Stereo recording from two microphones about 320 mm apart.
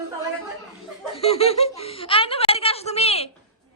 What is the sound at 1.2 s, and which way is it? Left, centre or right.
Speech, centre.